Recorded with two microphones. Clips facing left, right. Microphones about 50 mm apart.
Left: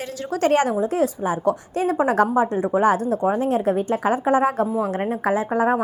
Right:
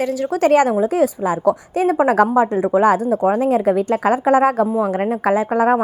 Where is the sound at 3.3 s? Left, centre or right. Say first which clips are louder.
Right 5 dB; right.